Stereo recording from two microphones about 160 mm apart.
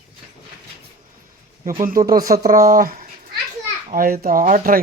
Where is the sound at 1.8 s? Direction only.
65° right (ahead or behind).